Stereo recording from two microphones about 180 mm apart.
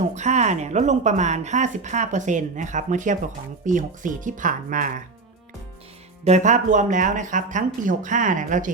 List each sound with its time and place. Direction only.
0.0 s speech: 40° right (ahead or behind)
6.2 s speech: 40° right (ahead or behind)